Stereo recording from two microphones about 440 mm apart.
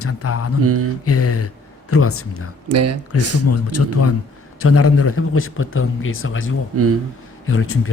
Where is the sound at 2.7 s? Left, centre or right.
Right.